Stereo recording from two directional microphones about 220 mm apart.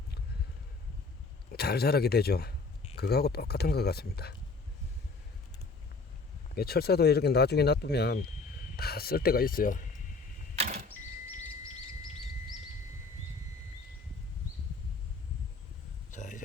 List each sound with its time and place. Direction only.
1.5 s speech: 45° left (ahead or behind)
6.6 s speech: 45° left (ahead or behind)
16.1 s a sound: 35° left (ahead or behind)